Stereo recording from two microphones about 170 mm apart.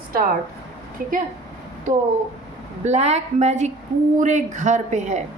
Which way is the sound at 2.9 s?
40° right (ahead or behind).